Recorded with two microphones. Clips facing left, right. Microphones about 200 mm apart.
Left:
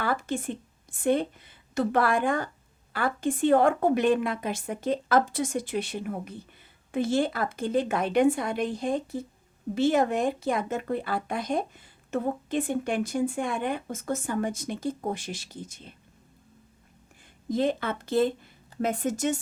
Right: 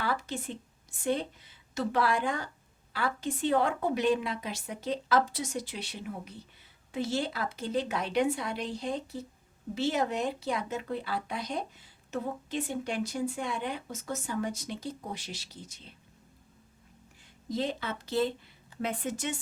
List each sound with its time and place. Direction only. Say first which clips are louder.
0.0 s a woman's voice: left 5 dB; 50° left (ahead or behind)
17.5 s speech: left 6 dB; 55° left (ahead or behind)